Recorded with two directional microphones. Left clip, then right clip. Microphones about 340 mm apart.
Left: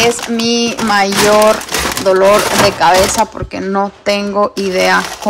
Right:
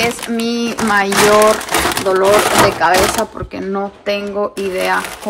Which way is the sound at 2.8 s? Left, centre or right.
Centre.